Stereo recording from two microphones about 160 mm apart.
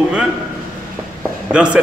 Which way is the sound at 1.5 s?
5° right (ahead or behind).